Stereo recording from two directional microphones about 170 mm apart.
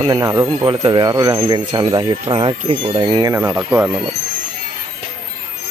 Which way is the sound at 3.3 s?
10° right (ahead or behind).